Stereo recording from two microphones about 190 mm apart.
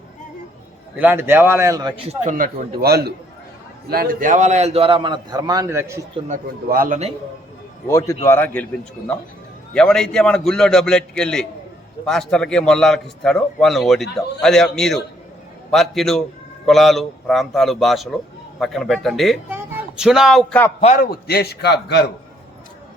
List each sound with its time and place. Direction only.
0.9 s speech: 10° right (ahead or behind)
2.0 s speech: 40° right (ahead or behind)
2.8 s a man's voice: 55° right (ahead or behind); by 6.0 s 15° right (ahead or behind)
6.1 s speech: 40° right (ahead or behind)
7.9 s a man's voice: 15° left (ahead or behind)
19.5 s speech: 10° right (ahead or behind); by 20.7 s 5° left (ahead or behind)
20.8 s a man's voice: 45° left (ahead or behind); by 22.1 s 60° left (ahead or behind)